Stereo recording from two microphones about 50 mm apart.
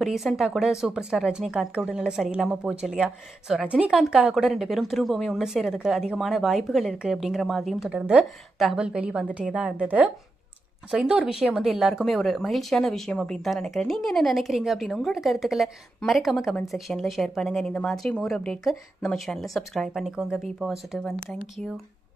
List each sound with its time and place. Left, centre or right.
0.0 s a woman's voice: centre
3.6 s a woman's voice: right
3.9 s a woman's voice: centre
4.5 s a woman's voice: centre
7.9 s a woman's voice: right
11.3 s a woman's voice: centre
12.0 s a woman's voice: centre
17.6 s speech: centre
18.6 s a woman's voice: centre
19.9 s a woman's voice: centre
21.0 s speech: centre